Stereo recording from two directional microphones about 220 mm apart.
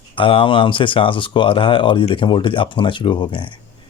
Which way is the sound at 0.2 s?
25° left (ahead or behind).